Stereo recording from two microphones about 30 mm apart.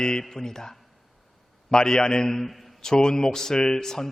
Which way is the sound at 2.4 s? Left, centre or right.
Centre.